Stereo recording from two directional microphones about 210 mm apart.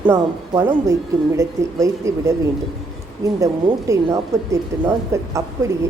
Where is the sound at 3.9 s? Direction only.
15° right (ahead or behind).